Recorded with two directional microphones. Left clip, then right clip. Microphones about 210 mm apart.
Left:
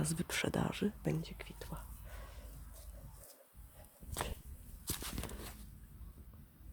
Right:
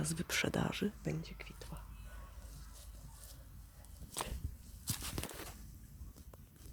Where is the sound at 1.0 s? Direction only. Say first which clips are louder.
Left 3 dB; 25° left (ahead or behind).